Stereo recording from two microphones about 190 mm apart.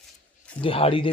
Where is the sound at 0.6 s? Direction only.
30° left (ahead or behind).